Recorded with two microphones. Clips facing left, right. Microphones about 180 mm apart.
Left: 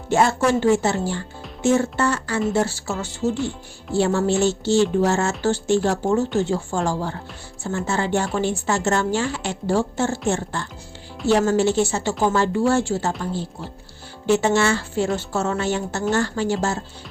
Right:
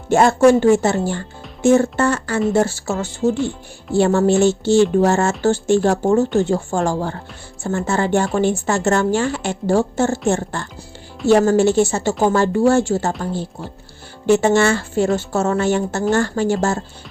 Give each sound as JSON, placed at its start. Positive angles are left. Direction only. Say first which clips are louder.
{"t": 0.1, "sound": "speech", "louder": "right 6 dB", "side_deg": -50}